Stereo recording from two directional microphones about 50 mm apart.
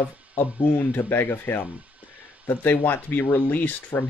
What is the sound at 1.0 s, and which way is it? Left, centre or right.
Speech, left.